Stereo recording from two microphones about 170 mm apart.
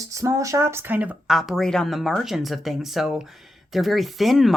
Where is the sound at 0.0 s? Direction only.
20° right (ahead or behind).